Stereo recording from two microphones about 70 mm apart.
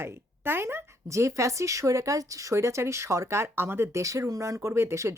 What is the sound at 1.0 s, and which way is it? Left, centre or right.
Speech, right.